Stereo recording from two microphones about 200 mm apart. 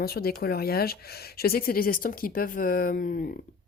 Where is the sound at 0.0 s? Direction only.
50° left (ahead or behind).